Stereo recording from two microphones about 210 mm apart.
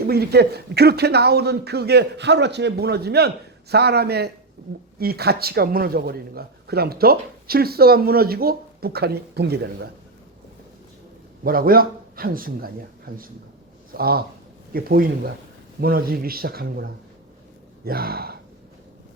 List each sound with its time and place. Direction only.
0.0 s speech: 50° right (ahead or behind)
11.4 s speech: 45° right (ahead or behind)